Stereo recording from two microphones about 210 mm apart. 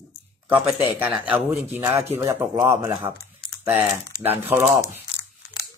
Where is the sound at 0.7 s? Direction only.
10° right (ahead or behind).